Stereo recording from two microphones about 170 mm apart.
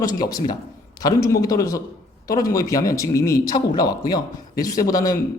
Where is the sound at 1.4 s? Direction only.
20° left (ahead or behind).